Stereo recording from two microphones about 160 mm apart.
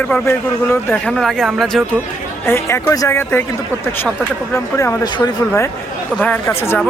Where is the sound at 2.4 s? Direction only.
15° left (ahead or behind).